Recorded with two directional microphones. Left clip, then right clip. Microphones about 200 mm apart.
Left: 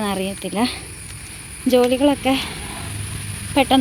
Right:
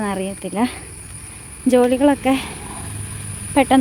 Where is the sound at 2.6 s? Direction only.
Centre (ahead or behind).